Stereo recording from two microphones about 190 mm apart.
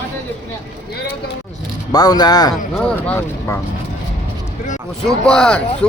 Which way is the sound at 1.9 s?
20° left (ahead or behind).